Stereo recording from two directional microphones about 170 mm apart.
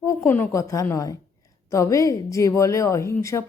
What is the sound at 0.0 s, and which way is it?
Speech, 15° left (ahead or behind).